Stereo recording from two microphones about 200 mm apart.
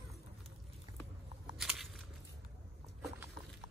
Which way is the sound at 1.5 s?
Centre (ahead or behind).